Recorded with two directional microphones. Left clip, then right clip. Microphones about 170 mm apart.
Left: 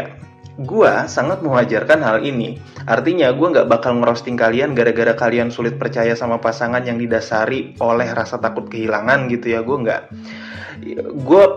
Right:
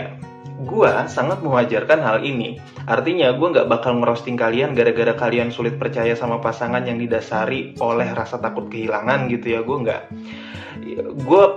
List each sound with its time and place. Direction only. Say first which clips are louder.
1.1 s a man's voice: left 2 dB; 25° left (ahead or behind)